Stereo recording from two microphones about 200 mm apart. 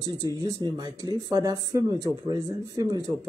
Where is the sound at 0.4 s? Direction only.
20° right (ahead or behind).